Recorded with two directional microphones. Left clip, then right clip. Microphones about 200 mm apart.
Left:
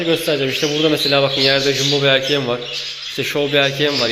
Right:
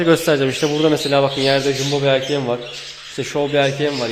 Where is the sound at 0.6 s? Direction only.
20° right (ahead or behind).